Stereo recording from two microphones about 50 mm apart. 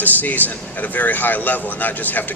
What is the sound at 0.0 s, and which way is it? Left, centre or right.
Speech, left.